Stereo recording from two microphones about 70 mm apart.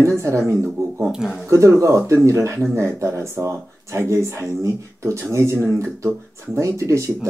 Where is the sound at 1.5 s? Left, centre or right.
Right.